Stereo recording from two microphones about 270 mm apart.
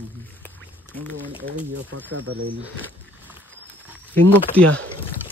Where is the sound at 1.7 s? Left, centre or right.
Right.